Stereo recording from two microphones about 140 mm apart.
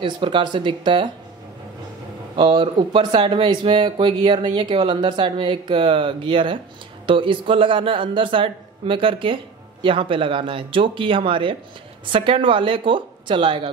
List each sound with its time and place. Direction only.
0.0 s a man's voice: 35° right (ahead or behind)
2.3 s a man's voice: 35° right (ahead or behind)